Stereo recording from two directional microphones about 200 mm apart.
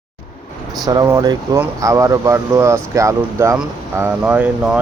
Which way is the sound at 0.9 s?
20° right (ahead or behind).